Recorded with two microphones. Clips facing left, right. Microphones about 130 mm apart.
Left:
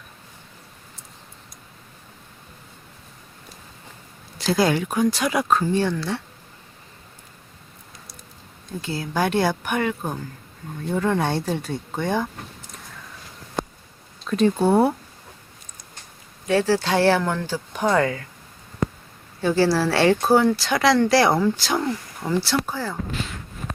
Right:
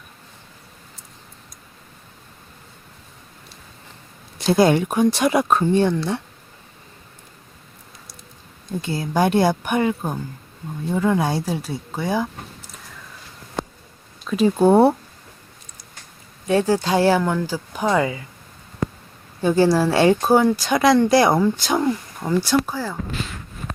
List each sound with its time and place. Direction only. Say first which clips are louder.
4.4 s speech: right 4 dB; 25° right (ahead or behind)
9.1 s speech: right 4 dB; 15° right (ahead or behind)
14.3 s speech: right 2 dB; 5° right (ahead or behind)
14.7 s speech: right 6 dB; 25° right (ahead or behind)
16.5 s speech: right 2 dB; 20° right (ahead or behind)
19.4 s speech: right 3 dB; 20° right (ahead or behind)